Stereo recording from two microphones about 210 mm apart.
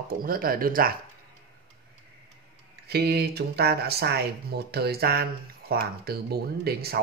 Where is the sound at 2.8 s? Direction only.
50° right (ahead or behind).